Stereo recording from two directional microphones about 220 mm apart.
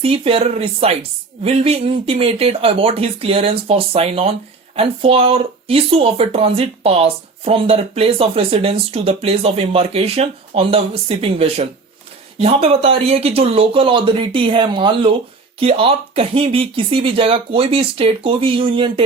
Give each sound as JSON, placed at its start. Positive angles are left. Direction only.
{"t": 0.0, "sound": "speech", "side_deg": -25}